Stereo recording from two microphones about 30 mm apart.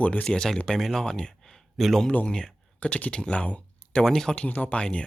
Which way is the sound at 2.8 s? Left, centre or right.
Left.